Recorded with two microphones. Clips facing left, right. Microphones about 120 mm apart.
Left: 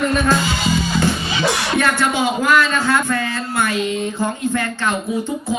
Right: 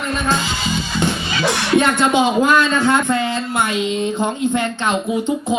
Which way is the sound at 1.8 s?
20° right (ahead or behind).